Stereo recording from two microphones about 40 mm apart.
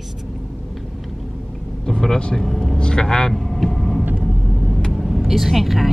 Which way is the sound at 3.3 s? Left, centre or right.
Centre.